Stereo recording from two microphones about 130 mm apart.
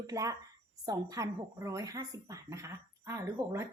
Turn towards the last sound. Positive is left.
turn(degrees=-25)  # may be behind; listen again after turning